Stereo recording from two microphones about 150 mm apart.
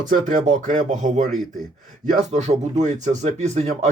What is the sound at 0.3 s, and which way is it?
Speech, 50° right (ahead or behind).